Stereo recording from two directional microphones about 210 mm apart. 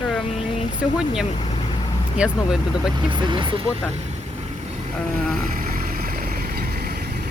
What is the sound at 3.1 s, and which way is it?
Speech, 20° right (ahead or behind).